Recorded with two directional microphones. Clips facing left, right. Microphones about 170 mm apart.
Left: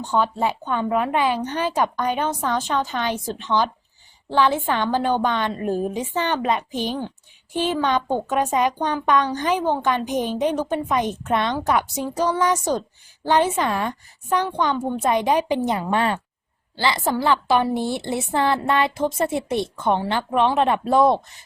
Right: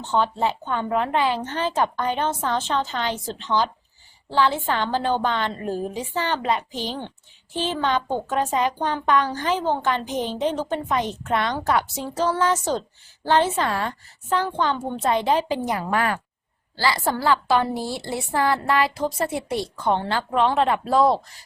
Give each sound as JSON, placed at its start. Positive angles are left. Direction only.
{"t": 0.0, "sound": "a child's voice", "side_deg": 10}